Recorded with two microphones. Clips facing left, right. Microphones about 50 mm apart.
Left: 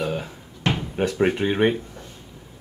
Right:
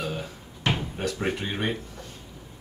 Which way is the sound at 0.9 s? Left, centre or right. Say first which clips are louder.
Left 7 dB; left.